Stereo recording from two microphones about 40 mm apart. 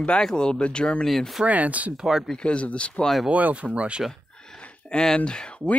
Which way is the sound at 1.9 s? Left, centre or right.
Centre.